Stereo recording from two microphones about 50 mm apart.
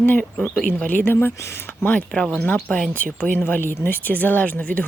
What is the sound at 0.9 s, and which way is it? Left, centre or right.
Speech, left.